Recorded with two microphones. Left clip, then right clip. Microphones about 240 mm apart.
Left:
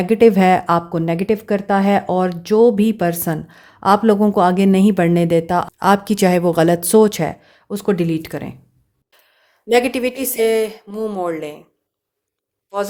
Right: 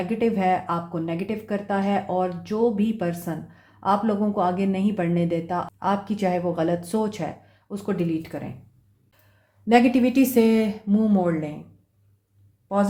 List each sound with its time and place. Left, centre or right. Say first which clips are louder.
0.0 s speech: left 11 dB; left
9.6 s speech: left 3 dB; left
12.7 s speech: left 2 dB; left